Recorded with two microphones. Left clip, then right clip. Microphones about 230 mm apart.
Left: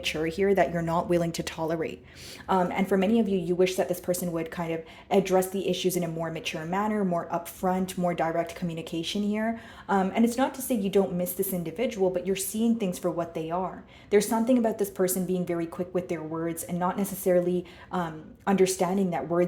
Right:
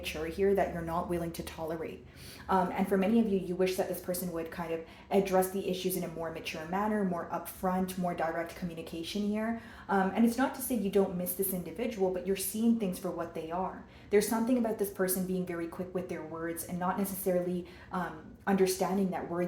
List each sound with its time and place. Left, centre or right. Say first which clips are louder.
0.0 s a woman's voice: left 5 dB; left